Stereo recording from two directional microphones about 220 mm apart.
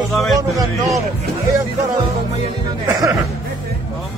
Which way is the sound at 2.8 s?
15° right (ahead or behind).